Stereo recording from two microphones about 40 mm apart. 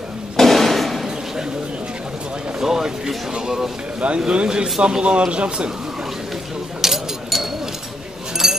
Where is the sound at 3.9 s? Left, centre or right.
Right.